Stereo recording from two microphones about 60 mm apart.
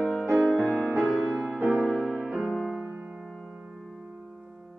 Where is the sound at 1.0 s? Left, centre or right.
Right.